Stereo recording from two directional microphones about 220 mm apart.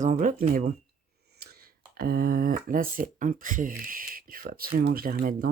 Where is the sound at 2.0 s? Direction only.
45° right (ahead or behind).